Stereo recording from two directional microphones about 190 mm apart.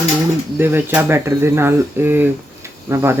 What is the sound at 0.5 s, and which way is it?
Speech, 10° right (ahead or behind).